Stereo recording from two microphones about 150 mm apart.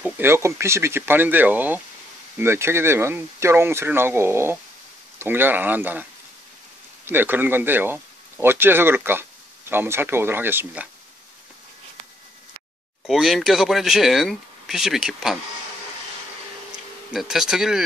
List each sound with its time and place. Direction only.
0.0 s speech: 15° right (ahead or behind)
7.1 s speech: 15° right (ahead or behind)
13.0 s speech: centre (ahead or behind)
17.1 s speech: centre (ahead or behind)